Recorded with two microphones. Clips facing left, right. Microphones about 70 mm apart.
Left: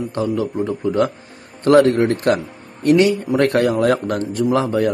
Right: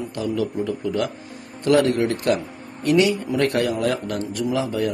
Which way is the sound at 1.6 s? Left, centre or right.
Left.